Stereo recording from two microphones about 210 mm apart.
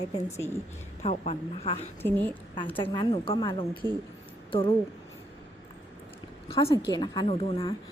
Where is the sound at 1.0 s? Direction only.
30° left (ahead or behind).